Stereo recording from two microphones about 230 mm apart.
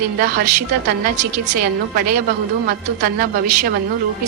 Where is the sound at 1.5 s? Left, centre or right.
Right.